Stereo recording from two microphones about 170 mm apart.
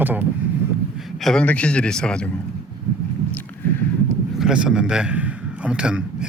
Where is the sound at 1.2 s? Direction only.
5° left (ahead or behind).